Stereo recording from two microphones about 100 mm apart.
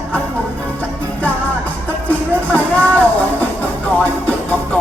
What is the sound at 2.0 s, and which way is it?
Music, 15° left (ahead or behind).